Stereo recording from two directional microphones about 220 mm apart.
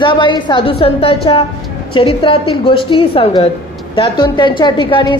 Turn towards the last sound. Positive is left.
turn(degrees=20)  # may be behind; listen again after turning